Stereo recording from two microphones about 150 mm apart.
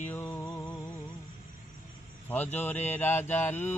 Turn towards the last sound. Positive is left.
turn(degrees=15)  # may be behind; listen again after turning